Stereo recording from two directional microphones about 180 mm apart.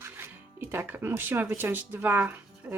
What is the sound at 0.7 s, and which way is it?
A woman's voice, 10° right (ahead or behind).